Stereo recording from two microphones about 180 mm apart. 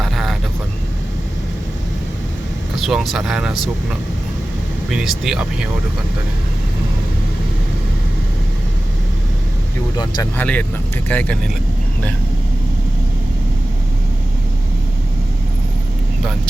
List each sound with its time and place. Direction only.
0.0 s vehicle: centre (ahead or behind)
2.7 s speech: centre (ahead or behind)
4.9 s speech: 5° right (ahead or behind)
10.3 s speech: 10° left (ahead or behind)